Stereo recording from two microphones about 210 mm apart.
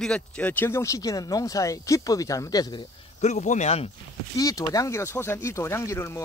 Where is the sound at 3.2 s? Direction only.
35° left (ahead or behind).